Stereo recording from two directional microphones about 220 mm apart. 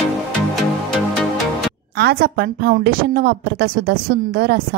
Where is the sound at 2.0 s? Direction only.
45° right (ahead or behind).